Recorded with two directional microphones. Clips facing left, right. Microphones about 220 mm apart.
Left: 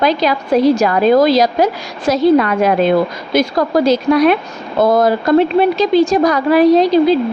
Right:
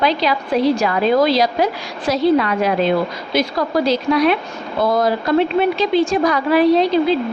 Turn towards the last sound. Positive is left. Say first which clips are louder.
# left 4 dB
turn(degrees=40)  # may be behind; listen again after turning